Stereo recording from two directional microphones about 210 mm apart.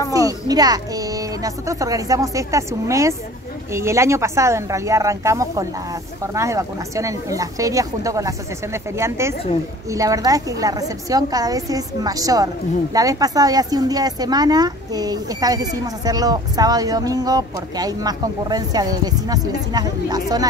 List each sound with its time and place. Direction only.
0.1 s a woman's voice: 15° right (ahead or behind)